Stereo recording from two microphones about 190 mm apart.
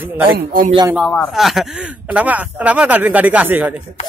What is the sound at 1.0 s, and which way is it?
Speech, centre (ahead or behind).